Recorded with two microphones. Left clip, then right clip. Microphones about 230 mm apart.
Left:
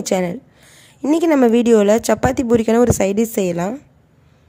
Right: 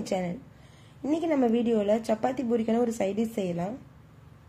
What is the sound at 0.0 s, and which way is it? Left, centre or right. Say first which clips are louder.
Speech: left 11 dB; left.